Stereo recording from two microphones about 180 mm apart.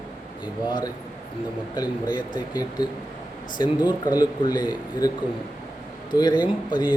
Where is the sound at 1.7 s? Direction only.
25° left (ahead or behind).